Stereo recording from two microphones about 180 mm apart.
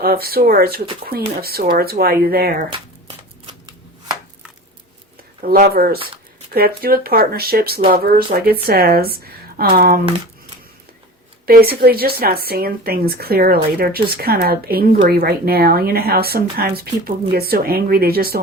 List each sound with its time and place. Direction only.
0.0 s speech: 60° right (ahead or behind)
5.4 s speech: 55° right (ahead or behind)
11.4 s speech: 55° right (ahead or behind)